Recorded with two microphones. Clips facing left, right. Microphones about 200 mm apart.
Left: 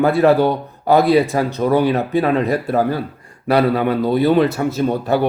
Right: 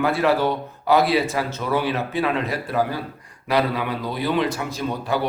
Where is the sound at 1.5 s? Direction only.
40° left (ahead or behind).